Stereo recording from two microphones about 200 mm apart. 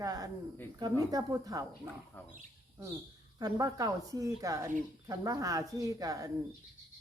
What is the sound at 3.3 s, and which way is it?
Speech, 20° right (ahead or behind).